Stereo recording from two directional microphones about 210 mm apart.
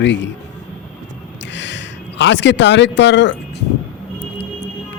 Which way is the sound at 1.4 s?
60° left (ahead or behind).